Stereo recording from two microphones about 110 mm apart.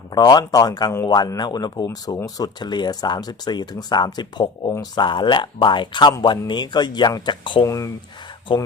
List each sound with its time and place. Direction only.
0.1 s speech: 40° left (ahead or behind)
7.6 s speech: 30° left (ahead or behind)
8.5 s speech: 45° left (ahead or behind)